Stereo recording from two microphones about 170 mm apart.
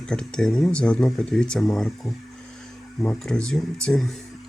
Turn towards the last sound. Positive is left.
turn(degrees=0)  # may be behind; listen again after turning